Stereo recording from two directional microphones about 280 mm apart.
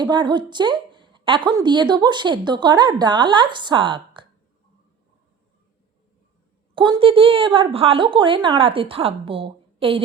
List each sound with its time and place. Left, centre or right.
0.0 s a woman's voice: centre
6.7 s a woman's voice: centre